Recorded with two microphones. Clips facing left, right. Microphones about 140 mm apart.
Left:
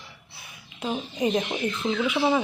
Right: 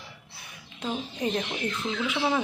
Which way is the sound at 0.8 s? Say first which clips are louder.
Left 4 dB; 10° left (ahead or behind).